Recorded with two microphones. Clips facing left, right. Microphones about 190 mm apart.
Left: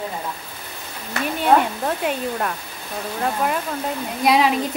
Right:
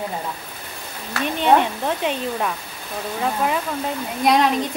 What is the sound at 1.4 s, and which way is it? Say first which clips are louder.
A woman's voice: even; 5° left (ahead or behind).